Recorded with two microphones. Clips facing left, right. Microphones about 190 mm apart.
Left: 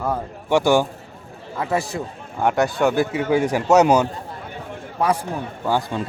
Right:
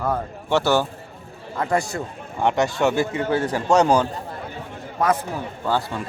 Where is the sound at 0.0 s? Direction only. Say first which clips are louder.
Even; 10° left (ahead or behind).